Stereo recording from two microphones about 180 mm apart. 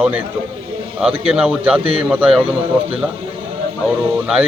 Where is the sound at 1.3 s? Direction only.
5° right (ahead or behind).